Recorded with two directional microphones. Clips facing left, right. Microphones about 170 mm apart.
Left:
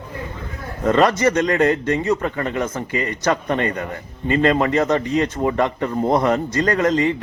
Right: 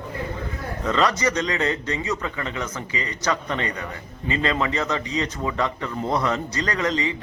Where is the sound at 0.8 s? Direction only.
50° left (ahead or behind).